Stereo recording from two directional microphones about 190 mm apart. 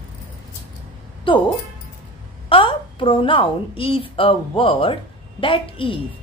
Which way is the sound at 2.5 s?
25° left (ahead or behind).